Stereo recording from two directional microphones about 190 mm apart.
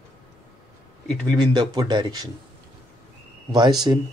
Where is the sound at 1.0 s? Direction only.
5° left (ahead or behind).